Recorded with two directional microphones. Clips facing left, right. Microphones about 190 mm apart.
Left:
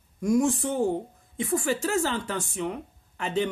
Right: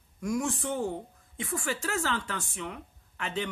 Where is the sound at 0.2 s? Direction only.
35° left (ahead or behind).